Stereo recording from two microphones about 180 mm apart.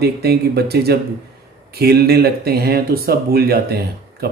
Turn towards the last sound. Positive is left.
turn(degrees=-60)  # may be behind; listen again after turning